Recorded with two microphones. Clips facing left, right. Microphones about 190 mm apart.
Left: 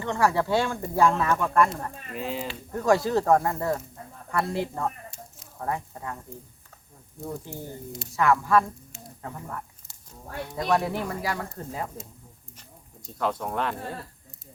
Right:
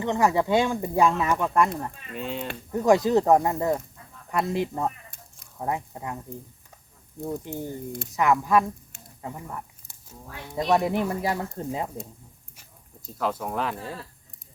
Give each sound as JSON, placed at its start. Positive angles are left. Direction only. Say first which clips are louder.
{"t": 0.0, "sound": "speech", "louder": "right 2 dB", "side_deg": -20}
{"t": 2.1, "sound": "speech", "louder": "even", "side_deg": 0}
{"t": 2.7, "sound": "speech", "louder": "right 3 dB", "side_deg": -20}
{"t": 7.2, "sound": "speech", "louder": "right 4 dB", "side_deg": -20}
{"t": 13.1, "sound": "speech", "louder": "even", "side_deg": 0}